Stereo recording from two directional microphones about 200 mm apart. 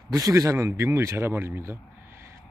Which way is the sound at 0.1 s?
15° right (ahead or behind).